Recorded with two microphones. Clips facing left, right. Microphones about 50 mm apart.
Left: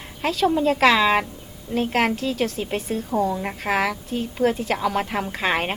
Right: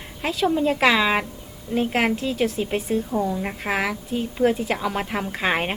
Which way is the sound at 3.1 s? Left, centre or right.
Centre.